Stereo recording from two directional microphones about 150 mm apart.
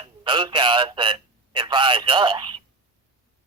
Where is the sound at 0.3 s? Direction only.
30° right (ahead or behind).